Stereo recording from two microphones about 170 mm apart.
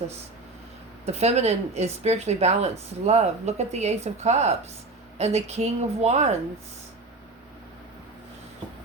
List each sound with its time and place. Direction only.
1.0 s a woman's voice: 40° right (ahead or behind)